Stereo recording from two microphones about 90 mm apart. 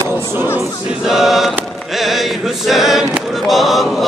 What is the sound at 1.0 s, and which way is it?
Chant, 5° right (ahead or behind).